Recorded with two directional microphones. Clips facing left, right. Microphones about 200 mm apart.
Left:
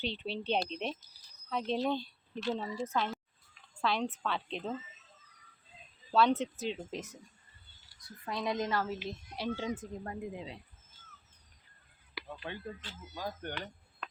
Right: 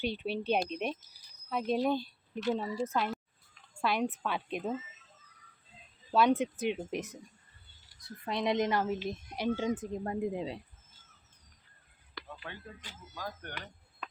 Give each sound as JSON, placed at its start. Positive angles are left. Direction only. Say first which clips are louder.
{"t": 0.0, "sound": "a woman's voice", "louder": "right 3 dB", "side_deg": -10}
{"t": 6.1, "sound": "a woman's voice", "louder": "right 1 dB", "side_deg": -15}
{"t": 8.2, "sound": "a woman's voice", "louder": "right 4 dB", "side_deg": -20}
{"t": 10.0, "sound": "speech", "louder": "right 7 dB", "side_deg": -35}
{"t": 12.4, "sound": "speech", "louder": "left 4 dB", "side_deg": 20}
{"t": 13.5, "sound": "a sound", "louder": "left 4 dB", "side_deg": -10}